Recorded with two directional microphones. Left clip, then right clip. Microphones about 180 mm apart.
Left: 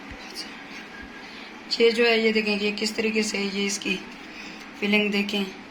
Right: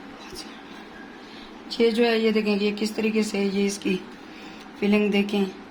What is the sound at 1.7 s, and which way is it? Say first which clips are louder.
A woman's voice: left 1 dB; 60° right (ahead or behind).